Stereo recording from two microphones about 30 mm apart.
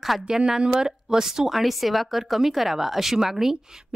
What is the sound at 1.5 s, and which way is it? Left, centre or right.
Speech, centre.